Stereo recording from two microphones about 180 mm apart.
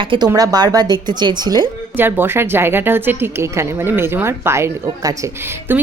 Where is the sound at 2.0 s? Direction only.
10° right (ahead or behind).